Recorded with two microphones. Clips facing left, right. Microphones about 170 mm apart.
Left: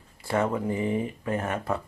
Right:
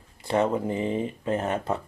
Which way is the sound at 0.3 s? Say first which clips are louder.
Right 2 dB; 20° right (ahead or behind).